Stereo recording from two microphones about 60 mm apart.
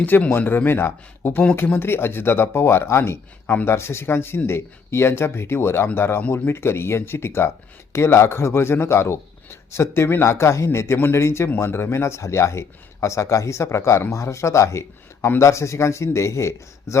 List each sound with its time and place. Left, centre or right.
0.0 s a man's voice: left